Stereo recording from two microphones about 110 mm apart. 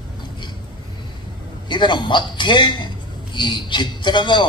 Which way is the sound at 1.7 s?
45° left (ahead or behind).